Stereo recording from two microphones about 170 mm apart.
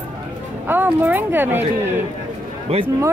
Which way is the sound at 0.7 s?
10° right (ahead or behind).